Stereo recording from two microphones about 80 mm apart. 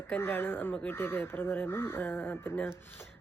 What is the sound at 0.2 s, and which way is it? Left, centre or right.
A woman's voice, left.